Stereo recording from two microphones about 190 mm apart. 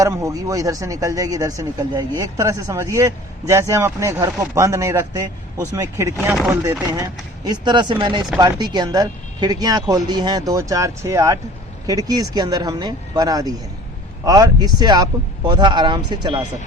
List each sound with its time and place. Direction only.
0.0 s speech: 15° right (ahead or behind)
6.2 s speech: centre (ahead or behind)
6.5 s speech: 15° right (ahead or behind)